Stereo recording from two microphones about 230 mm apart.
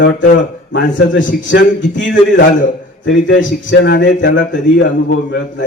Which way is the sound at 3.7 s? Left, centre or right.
Left.